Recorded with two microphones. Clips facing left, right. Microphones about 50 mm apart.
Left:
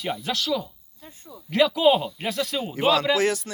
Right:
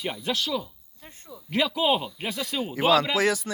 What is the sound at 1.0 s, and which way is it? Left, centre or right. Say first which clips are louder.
Speech: left 2 dB; right.